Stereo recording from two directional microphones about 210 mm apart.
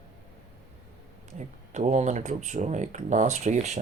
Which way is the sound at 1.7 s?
35° right (ahead or behind).